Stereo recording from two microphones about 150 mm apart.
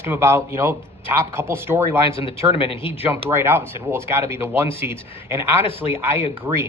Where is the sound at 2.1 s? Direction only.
40° left (ahead or behind).